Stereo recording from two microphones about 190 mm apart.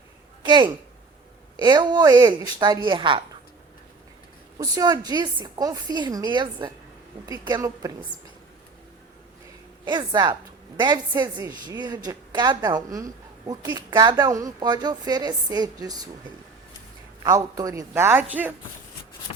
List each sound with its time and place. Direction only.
0.4 s a woman's voice: 25° right (ahead or behind)
4.5 s a woman's voice: 20° right (ahead or behind)
9.8 s a woman's voice: 25° right (ahead or behind)
17.2 s a woman's voice: 20° right (ahead or behind)